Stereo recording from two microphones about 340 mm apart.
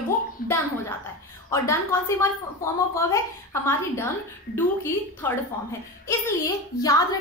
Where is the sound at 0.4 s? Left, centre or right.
Left.